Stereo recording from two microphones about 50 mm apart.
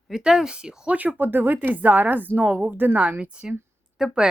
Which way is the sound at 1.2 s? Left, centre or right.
Right.